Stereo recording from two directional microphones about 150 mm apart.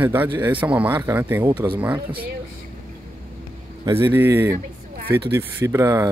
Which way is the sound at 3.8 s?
15° right (ahead or behind).